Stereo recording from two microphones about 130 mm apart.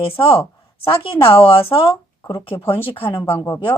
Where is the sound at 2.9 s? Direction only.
45° left (ahead or behind).